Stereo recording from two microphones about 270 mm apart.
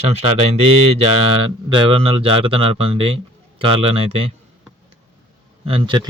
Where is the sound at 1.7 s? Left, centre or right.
Centre.